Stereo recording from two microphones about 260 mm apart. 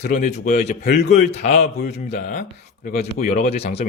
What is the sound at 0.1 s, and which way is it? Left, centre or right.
Speech, left.